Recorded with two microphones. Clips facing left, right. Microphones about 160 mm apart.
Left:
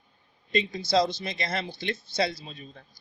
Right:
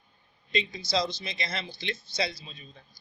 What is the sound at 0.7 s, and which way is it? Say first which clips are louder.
A man's voice: left 8 dB; 55° left (ahead or behind).